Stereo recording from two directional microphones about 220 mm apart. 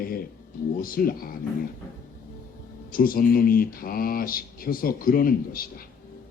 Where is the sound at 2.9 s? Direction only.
40° left (ahead or behind).